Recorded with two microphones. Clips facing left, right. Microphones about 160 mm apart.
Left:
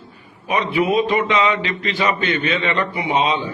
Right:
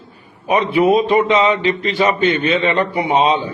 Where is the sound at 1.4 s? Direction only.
35° right (ahead or behind).